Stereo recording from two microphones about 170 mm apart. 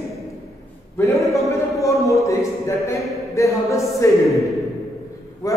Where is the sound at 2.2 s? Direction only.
15° left (ahead or behind).